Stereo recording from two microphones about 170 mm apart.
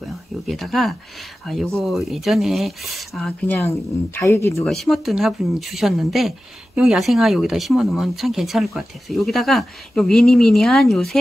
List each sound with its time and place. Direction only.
0.5 s speech: centre (ahead or behind)
3.5 s speech: 15° left (ahead or behind)
4.6 s speech: centre (ahead or behind)